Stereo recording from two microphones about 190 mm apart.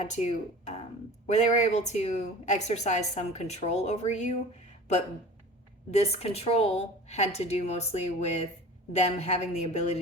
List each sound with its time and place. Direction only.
0.0 s a woman's voice: 35° left (ahead or behind)
5.9 s a woman's voice: 35° left (ahead or behind)